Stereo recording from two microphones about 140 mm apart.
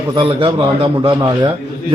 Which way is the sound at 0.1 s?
35° right (ahead or behind).